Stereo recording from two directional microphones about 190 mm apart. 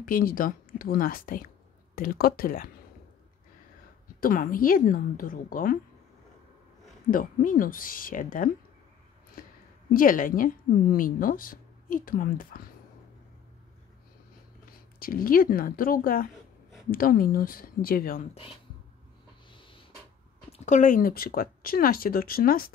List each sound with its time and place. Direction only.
0.0 s speech: 50° left (ahead or behind)
4.2 s speech: 45° left (ahead or behind)
7.1 s speech: 45° left (ahead or behind)
9.4 s a sound: 45° left (ahead or behind)
9.9 s speech: 45° left (ahead or behind)
15.0 s speech: 50° left (ahead or behind)
19.5 s a sound: 25° left (ahead or behind)
20.5 s speech: 40° left (ahead or behind)